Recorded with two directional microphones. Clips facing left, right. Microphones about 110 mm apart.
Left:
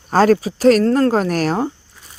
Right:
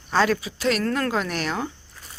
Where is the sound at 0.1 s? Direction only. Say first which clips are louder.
Left 8 dB; 40° left (ahead or behind).